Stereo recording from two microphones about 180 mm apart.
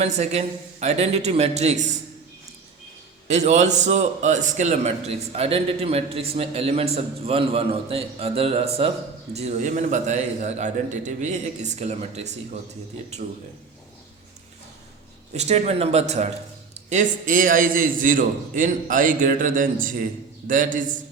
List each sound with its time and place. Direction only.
0.0 s a man's voice: 35° right (ahead or behind)
3.2 s a man's voice: 40° right (ahead or behind)
15.3 s a man's voice: 40° right (ahead or behind)